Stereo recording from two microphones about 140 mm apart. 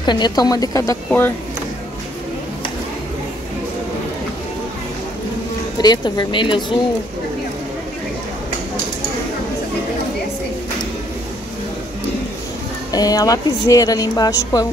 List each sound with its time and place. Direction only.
0.0 s a woman's voice: 30° left (ahead or behind)
5.8 s a woman's voice: 30° left (ahead or behind)
12.9 s a woman's voice: 25° left (ahead or behind)